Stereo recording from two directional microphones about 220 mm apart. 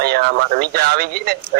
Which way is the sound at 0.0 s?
45° right (ahead or behind).